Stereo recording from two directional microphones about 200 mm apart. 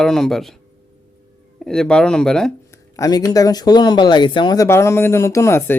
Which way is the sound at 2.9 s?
20° left (ahead or behind).